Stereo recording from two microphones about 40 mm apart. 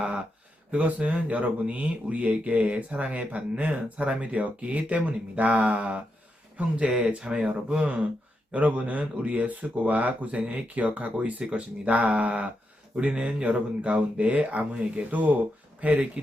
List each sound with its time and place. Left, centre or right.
0.7 s speech: right
7.2 s speech: right
8.5 s speech: right
15.1 s speech: right